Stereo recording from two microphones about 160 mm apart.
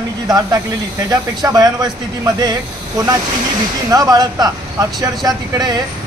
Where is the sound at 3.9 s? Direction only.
25° right (ahead or behind).